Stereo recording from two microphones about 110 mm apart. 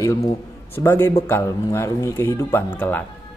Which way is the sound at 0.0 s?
30° left (ahead or behind).